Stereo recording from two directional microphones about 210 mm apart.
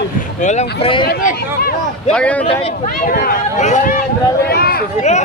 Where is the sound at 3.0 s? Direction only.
40° left (ahead or behind).